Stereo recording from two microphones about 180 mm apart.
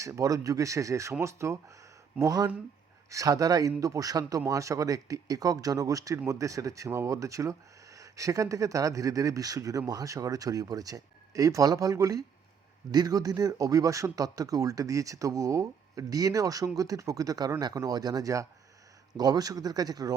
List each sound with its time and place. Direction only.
0.0 s a man's voice: 20° right (ahead or behind)